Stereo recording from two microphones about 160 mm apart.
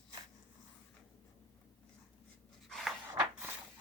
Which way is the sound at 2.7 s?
Centre (ahead or behind).